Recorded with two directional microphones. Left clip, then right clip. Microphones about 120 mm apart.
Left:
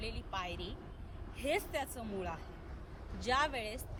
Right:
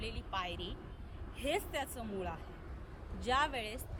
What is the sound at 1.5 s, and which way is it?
Speech, 15° right (ahead or behind).